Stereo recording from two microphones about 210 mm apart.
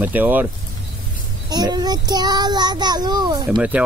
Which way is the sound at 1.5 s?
20° right (ahead or behind).